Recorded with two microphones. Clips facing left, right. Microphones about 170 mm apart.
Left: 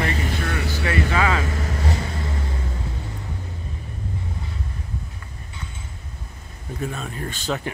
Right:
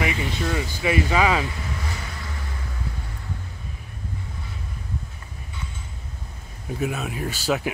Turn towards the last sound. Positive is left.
turn(degrees=-5)  # may be behind; listen again after turning